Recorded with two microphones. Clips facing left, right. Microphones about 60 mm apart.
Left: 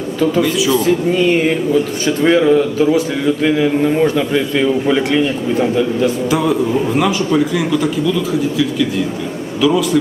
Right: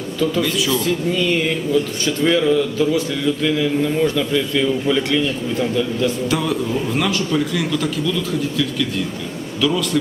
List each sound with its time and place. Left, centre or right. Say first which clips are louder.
0.4 s a man's voice: left 5 dB; centre
0.9 s speech: left 6 dB; left
6.3 s a man's voice: left 5 dB; centre